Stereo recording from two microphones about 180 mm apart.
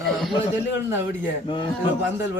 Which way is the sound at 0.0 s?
Centre (ahead or behind).